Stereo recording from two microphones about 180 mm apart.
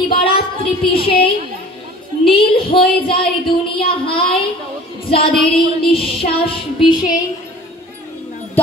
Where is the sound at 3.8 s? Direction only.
30° left (ahead or behind).